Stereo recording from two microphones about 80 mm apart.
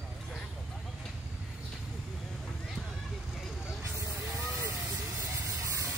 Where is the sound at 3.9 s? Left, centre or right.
Right.